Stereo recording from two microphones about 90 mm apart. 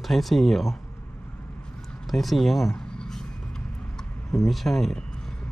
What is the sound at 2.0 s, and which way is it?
Vehicle, centre (ahead or behind).